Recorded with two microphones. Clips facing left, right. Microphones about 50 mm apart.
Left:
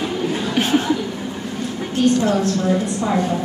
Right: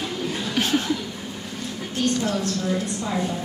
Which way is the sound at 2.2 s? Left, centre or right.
Left.